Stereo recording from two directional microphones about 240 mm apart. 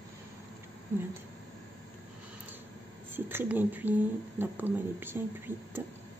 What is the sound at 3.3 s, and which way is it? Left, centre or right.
A woman's voice, centre.